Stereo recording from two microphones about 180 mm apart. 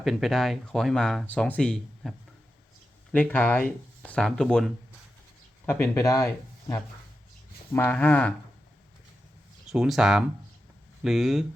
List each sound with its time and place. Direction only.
0.0 s speech: centre (ahead or behind)
5.6 s speech: 15° left (ahead or behind)
9.7 s speech: 5° right (ahead or behind)